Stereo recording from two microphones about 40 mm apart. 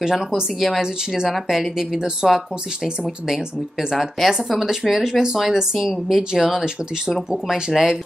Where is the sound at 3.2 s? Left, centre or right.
Centre.